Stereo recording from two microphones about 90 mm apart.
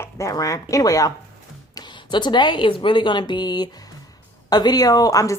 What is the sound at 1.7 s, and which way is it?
Speech, 60° left (ahead or behind).